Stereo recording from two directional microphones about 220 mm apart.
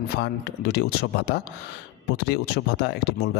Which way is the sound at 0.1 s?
45° left (ahead or behind).